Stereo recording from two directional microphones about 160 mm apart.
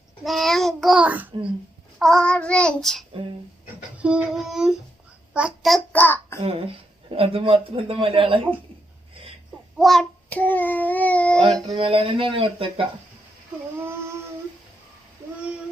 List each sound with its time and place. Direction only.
0.3 s a child's voice: centre (ahead or behind)
2.0 s child singing: 5° left (ahead or behind)
4.0 s child singing: 5° right (ahead or behind)
5.3 s a child's voice: 5° right (ahead or behind)
6.0 s a child's voice: 10° left (ahead or behind)
7.1 s speech: 35° right (ahead or behind)
9.7 s child singing: centre (ahead or behind)
11.7 s speech: 35° right (ahead or behind)
13.7 s child singing: 15° right (ahead or behind)